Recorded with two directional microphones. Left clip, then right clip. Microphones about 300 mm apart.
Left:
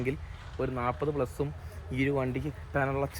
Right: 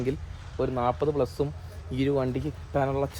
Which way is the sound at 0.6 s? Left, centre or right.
Centre.